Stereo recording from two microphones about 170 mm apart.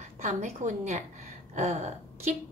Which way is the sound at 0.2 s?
45° right (ahead or behind).